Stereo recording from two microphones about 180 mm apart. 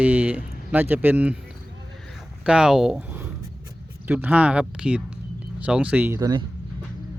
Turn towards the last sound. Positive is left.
turn(degrees=-20)  # may be behind; listen again after turning